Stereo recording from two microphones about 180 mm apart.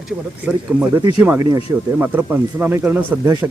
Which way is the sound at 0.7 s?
5° right (ahead or behind).